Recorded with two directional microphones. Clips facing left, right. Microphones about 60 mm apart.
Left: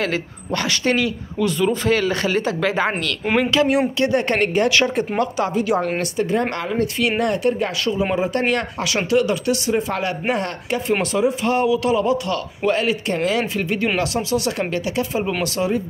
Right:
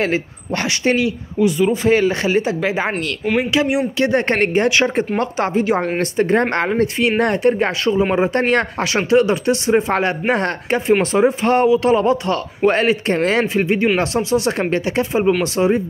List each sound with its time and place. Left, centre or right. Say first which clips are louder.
0.0 s speech: right 4 dB; right
1.5 s speech: right 3 dB; centre
1.9 s speech: right 4 dB; right
4.0 s speech: right 2 dB; right
7.8 s speech: right 4 dB; right